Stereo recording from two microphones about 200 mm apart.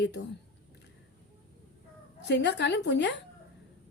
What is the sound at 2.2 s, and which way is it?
Speech, 60° left (ahead or behind).